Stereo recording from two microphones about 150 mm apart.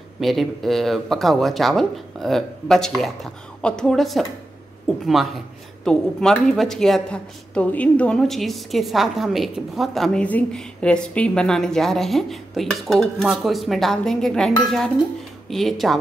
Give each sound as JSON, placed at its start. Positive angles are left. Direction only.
{"t": 0.2, "sound": "a woman's voice", "side_deg": 0}